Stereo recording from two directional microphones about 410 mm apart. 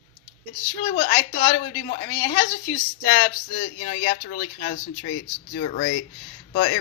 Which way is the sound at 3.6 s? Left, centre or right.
Left.